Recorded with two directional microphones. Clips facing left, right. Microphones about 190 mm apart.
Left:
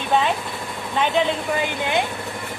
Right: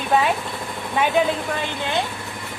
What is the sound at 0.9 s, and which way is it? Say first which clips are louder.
Speech: right 1 dB; 10° right (ahead or behind).